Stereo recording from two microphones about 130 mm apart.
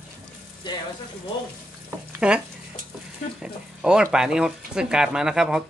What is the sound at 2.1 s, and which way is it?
Speech, 10° right (ahead or behind).